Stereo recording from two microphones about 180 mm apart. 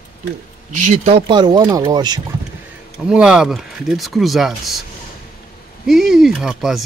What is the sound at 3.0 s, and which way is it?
Speech, 5° right (ahead or behind).